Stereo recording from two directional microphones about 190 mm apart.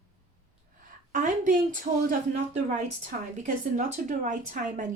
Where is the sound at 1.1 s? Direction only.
45° right (ahead or behind).